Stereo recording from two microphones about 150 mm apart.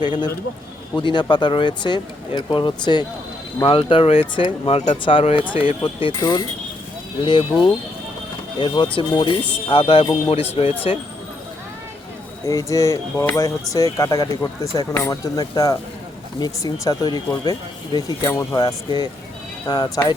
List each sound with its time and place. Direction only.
0.0 s speech: 30° left (ahead or behind)
12.5 s speech: 20° left (ahead or behind)